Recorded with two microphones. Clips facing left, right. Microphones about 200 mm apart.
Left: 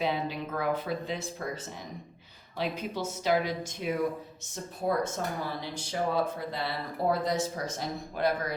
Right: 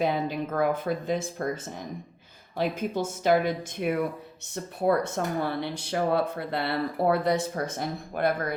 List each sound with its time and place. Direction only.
0.0 s speech: 50° right (ahead or behind)
2.6 s speech: 50° right (ahead or behind)